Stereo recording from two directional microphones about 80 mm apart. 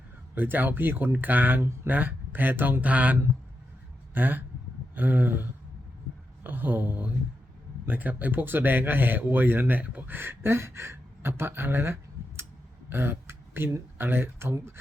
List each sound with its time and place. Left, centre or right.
0.3 s speech: right